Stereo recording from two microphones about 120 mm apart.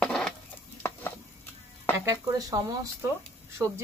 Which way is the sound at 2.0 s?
30° right (ahead or behind).